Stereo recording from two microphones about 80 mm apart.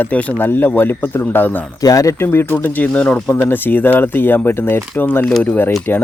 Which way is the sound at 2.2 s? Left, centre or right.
Left.